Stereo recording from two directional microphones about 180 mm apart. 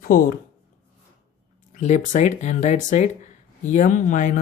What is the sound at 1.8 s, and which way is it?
Speech, 40° left (ahead or behind).